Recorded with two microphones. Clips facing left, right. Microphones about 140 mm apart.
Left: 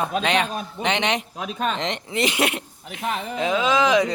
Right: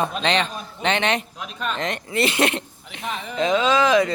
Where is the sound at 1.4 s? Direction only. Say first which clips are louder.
Left 3 dB; 55° left (ahead or behind).